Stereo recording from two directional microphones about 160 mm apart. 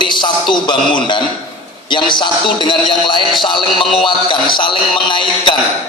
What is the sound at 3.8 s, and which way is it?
Speech, centre (ahead or behind).